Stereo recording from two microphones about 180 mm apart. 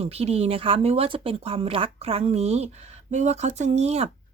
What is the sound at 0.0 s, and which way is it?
A woman's voice, 35° right (ahead or behind).